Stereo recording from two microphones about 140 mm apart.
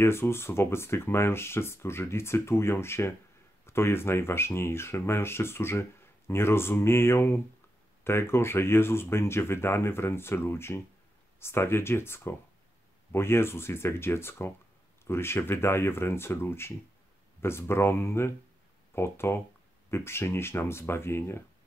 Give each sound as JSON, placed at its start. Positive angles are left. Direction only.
{"t": 0.0, "sound": "speech", "side_deg": 20}